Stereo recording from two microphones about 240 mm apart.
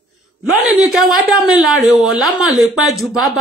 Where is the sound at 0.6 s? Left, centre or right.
Centre.